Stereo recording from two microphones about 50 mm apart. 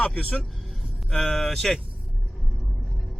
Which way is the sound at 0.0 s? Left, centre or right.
Centre.